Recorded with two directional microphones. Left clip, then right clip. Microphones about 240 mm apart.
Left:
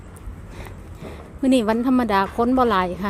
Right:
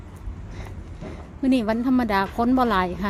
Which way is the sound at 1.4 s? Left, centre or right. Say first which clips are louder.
Left 3 dB; centre.